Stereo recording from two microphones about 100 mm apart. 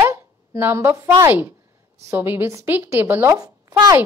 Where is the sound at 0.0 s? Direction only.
25° right (ahead or behind).